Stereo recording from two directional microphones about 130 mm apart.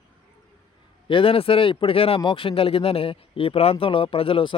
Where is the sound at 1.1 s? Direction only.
45° left (ahead or behind).